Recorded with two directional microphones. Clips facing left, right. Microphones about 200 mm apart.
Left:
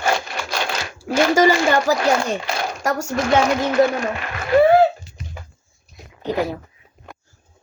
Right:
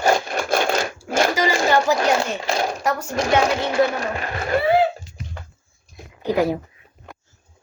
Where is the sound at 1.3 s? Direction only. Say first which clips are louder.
Left 6 dB; 50° left (ahead or behind).